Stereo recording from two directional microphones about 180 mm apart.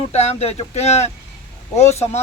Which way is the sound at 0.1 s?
35° left (ahead or behind).